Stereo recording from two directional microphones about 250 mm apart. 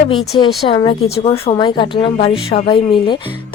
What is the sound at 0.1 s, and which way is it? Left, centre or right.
Speech, left.